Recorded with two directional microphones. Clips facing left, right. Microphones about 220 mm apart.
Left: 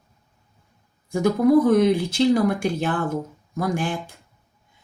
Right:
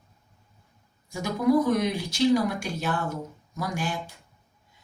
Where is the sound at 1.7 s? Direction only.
55° left (ahead or behind).